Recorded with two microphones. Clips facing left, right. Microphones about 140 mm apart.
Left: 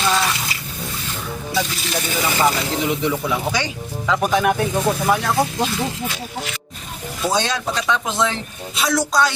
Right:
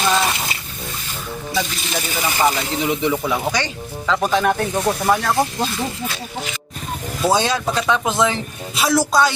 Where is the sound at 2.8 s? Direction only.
Centre (ahead or behind).